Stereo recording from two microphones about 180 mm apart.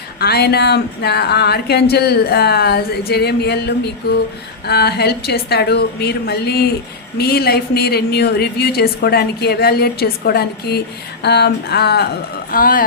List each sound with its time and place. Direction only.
0.2 s a woman's voice: 60° left (ahead or behind)
12.5 s speech: 50° left (ahead or behind)